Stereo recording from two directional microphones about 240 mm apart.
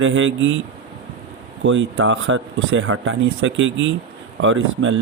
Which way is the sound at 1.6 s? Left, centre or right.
Right.